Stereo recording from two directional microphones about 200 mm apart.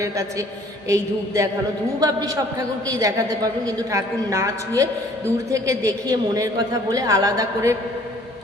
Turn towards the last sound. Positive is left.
turn(degrees=-15)  # may be behind; listen again after turning